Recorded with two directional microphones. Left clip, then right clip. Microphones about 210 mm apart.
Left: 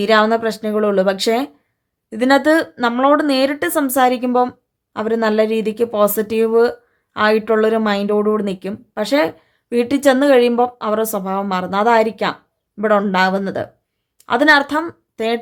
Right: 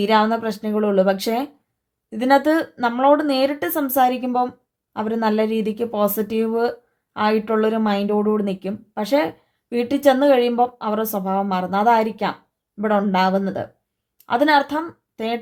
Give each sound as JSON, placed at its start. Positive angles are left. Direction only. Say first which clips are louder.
{"t": 0.0, "sound": "a woman's voice", "louder": "left 4 dB", "side_deg": 20}